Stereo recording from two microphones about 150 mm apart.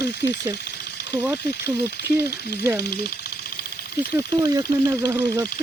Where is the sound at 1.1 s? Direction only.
15° right (ahead or behind).